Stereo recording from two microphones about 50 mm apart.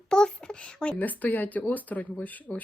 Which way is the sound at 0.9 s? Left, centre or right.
Left.